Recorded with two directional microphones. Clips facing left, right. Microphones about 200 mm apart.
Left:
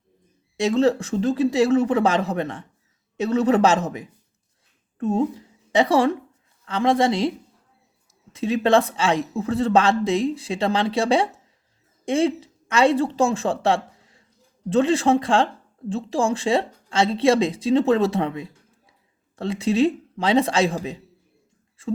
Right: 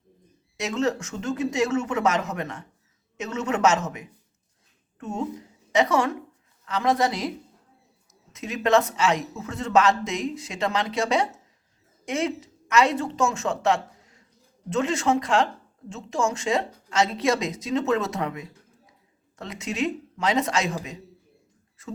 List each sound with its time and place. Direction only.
0.5 s a woman's voice: 30° left (ahead or behind)